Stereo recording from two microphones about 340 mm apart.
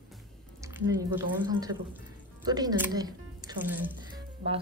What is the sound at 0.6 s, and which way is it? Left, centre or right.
Speech, centre.